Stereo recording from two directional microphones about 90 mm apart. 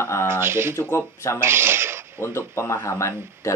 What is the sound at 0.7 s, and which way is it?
Speech, 30° left (ahead or behind).